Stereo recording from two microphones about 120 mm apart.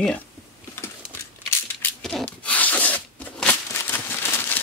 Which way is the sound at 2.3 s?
15° left (ahead or behind).